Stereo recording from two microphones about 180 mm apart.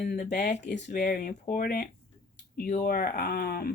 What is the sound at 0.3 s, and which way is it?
Speech, 40° left (ahead or behind).